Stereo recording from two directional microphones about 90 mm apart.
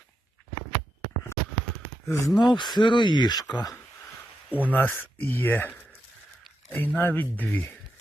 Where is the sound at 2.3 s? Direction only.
55° left (ahead or behind).